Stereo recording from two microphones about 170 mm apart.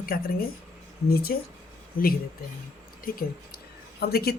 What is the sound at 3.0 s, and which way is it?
Speech, 60° left (ahead or behind).